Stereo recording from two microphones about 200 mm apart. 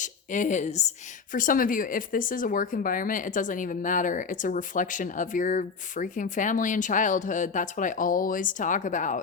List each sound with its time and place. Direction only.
0.0 s a woman's voice: 40° left (ahead or behind)